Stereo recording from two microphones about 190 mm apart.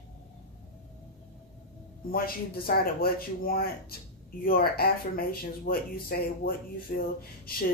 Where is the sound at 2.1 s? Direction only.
50° left (ahead or behind).